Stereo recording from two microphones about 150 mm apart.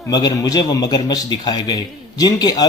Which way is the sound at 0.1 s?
25° left (ahead or behind).